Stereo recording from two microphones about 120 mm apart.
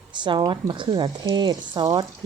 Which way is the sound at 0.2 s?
40° right (ahead or behind).